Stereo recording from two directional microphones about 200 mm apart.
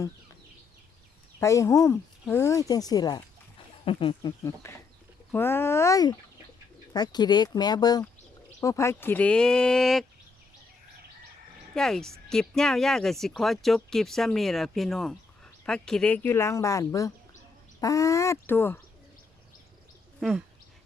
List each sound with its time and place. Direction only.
1.4 s speech: 15° left (ahead or behind)
11.7 s speech: centre (ahead or behind)
20.1 s speech: centre (ahead or behind)